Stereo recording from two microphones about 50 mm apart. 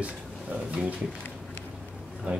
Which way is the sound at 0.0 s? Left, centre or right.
Right.